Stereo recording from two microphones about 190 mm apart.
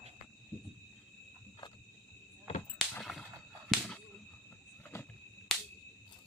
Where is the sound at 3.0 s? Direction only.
Centre (ahead or behind).